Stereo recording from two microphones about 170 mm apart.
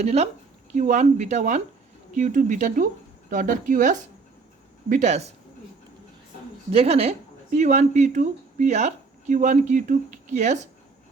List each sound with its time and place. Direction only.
0.0 s speech: 40° right (ahead or behind)
6.7 s speech: 35° right (ahead or behind)